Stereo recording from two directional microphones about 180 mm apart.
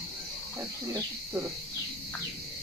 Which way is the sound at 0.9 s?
20° right (ahead or behind).